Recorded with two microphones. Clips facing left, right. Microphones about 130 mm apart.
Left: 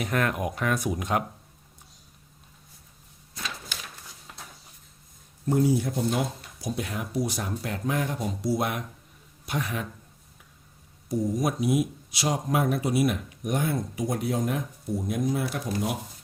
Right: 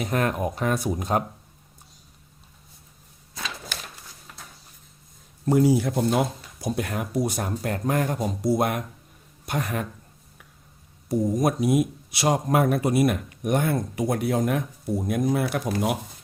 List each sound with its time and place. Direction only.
0.0 s speech: 35° right (ahead or behind)
3.9 s a sound: centre (ahead or behind)
5.5 s speech: 90° right; by 9.8 s 50° right (ahead or behind)
11.3 s speech: 50° right (ahead or behind); by 16.0 s 70° right (ahead or behind)